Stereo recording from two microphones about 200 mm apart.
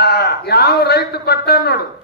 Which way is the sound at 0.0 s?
55° left (ahead or behind).